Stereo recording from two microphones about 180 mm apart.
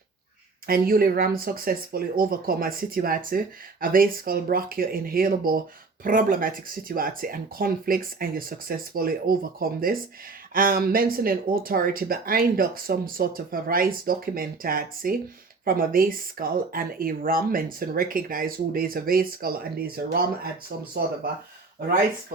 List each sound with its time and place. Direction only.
0.7 s speech: 55° right (ahead or behind)